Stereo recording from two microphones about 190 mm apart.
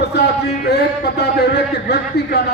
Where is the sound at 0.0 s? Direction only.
60° left (ahead or behind).